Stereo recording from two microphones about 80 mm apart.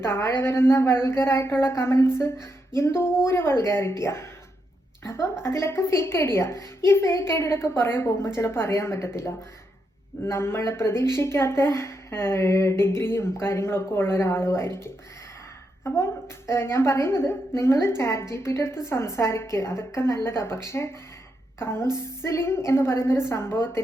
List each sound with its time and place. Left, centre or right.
0.0 s a woman's voice: left
16.5 s a woman's voice: left